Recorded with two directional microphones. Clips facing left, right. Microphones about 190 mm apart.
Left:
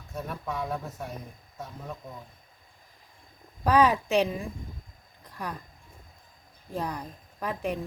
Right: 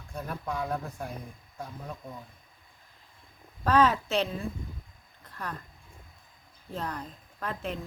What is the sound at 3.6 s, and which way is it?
Speech, 15° left (ahead or behind).